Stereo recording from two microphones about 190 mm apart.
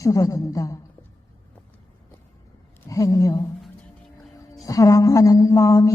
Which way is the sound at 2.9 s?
15° left (ahead or behind).